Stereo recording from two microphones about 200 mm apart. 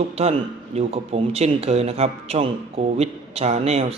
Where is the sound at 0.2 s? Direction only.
30° right (ahead or behind).